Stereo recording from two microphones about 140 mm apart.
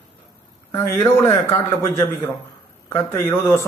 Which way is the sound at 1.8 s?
20° left (ahead or behind).